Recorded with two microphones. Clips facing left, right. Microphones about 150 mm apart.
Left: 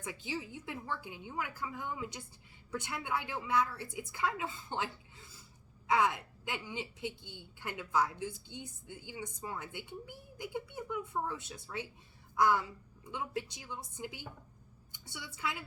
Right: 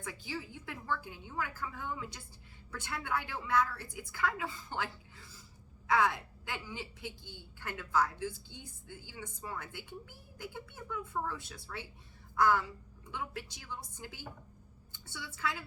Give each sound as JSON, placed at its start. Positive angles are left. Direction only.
{"t": 0.0, "sound": "a woman's voice", "side_deg": 20}